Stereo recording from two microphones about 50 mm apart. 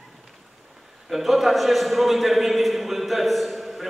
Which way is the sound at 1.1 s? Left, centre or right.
Centre.